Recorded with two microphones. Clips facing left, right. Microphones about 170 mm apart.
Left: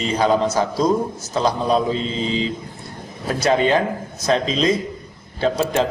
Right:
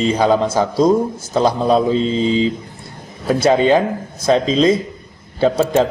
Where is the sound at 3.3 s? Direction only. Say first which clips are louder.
Right 4 dB; 25° right (ahead or behind).